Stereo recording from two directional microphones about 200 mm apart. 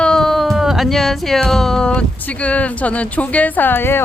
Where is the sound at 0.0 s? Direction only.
5° left (ahead or behind).